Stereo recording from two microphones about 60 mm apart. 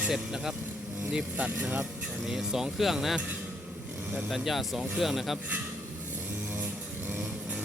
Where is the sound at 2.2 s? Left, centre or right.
Centre.